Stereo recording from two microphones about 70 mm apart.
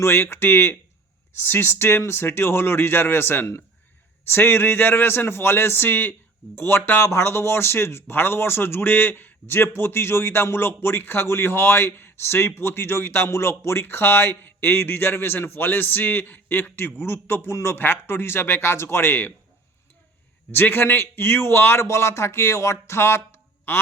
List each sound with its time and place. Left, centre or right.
0.0 s a man's voice: left
20.5 s a man's voice: left